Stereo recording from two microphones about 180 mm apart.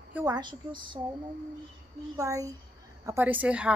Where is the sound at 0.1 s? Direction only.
20° right (ahead or behind).